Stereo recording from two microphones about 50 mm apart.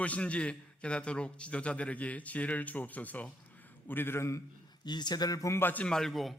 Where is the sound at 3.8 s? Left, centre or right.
Left.